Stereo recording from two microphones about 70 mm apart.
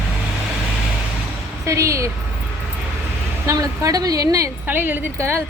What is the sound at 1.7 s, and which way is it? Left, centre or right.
Speech, right.